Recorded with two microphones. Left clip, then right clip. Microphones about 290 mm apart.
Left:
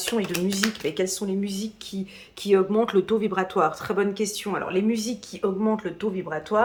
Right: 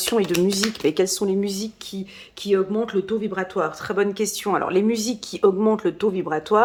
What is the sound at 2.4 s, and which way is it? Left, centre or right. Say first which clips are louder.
Speech: left 1 dB; centre.